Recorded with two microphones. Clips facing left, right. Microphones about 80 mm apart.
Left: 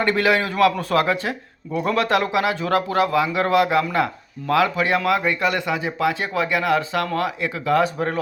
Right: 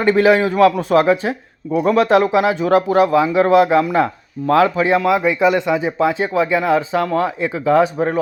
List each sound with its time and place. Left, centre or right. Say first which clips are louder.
0.0 s speech: right 6 dB; right
4.9 s speech: right 5 dB; centre